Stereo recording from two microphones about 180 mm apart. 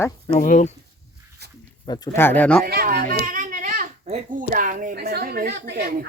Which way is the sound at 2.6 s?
55° right (ahead or behind).